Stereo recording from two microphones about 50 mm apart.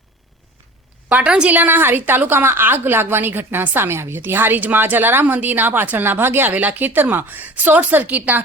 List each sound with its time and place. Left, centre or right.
1.1 s a woman's voice: right
1.5 s a woman's voice: right
3.8 s a woman's voice: right
6.5 s a woman's voice: right